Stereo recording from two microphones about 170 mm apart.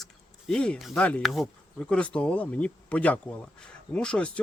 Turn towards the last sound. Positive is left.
turn(degrees=5)  # may be behind; listen again after turning